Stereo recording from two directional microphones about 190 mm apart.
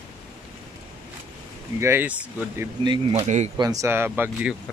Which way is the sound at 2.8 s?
25° right (ahead or behind).